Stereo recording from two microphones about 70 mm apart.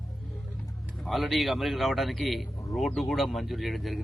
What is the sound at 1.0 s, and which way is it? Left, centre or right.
A man's voice, centre.